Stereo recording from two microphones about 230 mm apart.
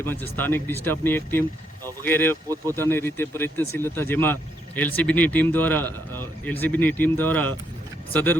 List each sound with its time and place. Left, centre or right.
0.0 s speech: centre